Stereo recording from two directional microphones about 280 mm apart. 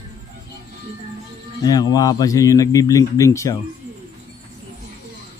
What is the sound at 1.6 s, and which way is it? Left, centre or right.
A man's voice, centre.